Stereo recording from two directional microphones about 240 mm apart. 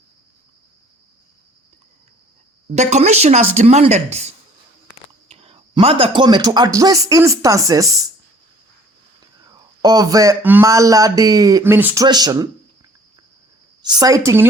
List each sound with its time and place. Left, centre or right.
2.6 s speech: right
9.4 s speech: centre
13.8 s speech: centre